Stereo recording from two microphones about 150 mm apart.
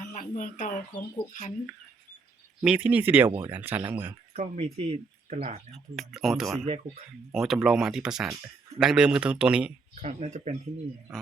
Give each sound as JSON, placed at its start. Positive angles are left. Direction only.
{"t": 0.1, "sound": "a sound", "side_deg": 55}
{"t": 1.3, "sound": "speech", "side_deg": 50}
{"t": 2.6, "sound": "speech", "side_deg": -10}
{"t": 4.4, "sound": "speech", "side_deg": -45}
{"t": 5.7, "sound": "speech", "side_deg": 0}
{"t": 10.0, "sound": "speech", "side_deg": -50}